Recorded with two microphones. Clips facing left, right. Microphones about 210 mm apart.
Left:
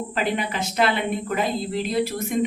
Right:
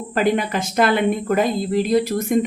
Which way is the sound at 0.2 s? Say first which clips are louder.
Right 7 dB; 50° right (ahead or behind).